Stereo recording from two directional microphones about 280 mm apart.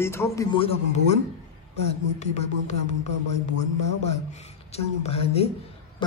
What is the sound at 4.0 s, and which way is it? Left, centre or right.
A woman's voice, left.